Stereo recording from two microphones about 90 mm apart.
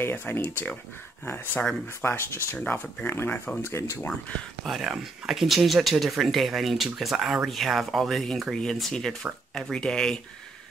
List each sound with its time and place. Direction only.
0.0 s speech: 25° left (ahead or behind)
2.5 s speech: 15° left (ahead or behind)
3.1 s speech: 25° left (ahead or behind)
4.6 s speech: centre (ahead or behind)